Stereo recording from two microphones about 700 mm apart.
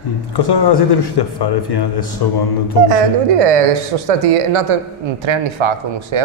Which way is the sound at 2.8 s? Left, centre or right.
Right.